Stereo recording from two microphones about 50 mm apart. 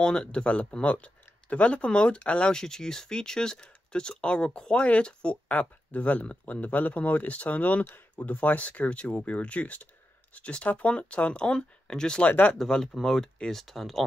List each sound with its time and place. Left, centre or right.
0.0 s speech: centre
12.2 s speech: left
12.5 s speech: centre